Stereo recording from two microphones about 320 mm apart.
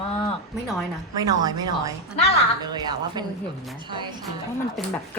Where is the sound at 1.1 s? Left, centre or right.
Centre.